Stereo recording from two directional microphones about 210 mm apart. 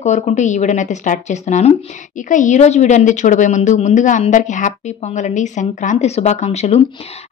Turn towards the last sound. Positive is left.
turn(degrees=30)  # may be behind; listen again after turning